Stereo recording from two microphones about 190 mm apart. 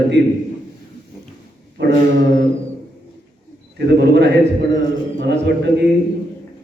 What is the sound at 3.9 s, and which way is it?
Speech, 60° right (ahead or behind).